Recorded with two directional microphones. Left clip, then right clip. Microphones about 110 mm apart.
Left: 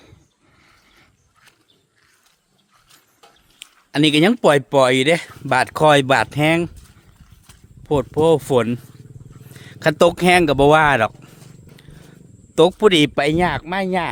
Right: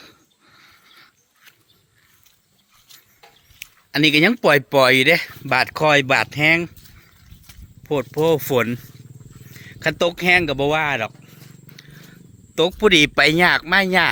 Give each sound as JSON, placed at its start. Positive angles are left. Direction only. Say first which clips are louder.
{"t": 0.5, "sound": "a sound", "louder": "right 4 dB", "side_deg": 30}
{"t": 3.9, "sound": "speech", "louder": "even", "side_deg": 40}
{"t": 4.7, "sound": "speech", "louder": "right 1 dB", "side_deg": 25}
{"t": 5.5, "sound": "speech", "louder": "left 3 dB", "side_deg": 55}
{"t": 7.9, "sound": "speech", "louder": "left 3 dB", "side_deg": 45}
{"t": 9.5, "sound": "speech", "louder": "left 4 dB", "side_deg": 70}
{"t": 12.5, "sound": "speech", "louder": "left 2 dB", "side_deg": 70}
{"t": 13.1, "sound": "speech", "louder": "right 4 dB", "side_deg": 30}